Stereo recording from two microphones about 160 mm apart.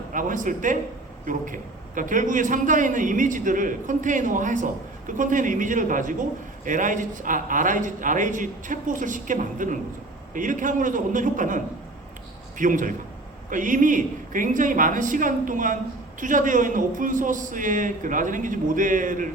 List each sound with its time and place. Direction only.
0.1 s a man's voice: 55° right (ahead or behind)